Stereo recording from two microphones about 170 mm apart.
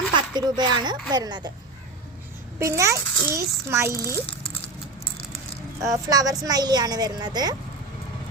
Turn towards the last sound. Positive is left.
turn(degrees=-25)  # may be behind; listen again after turning